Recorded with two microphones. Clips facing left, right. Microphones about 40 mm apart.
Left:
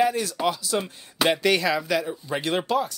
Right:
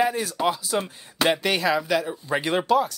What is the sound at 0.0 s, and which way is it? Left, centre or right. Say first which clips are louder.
Speech: even; centre.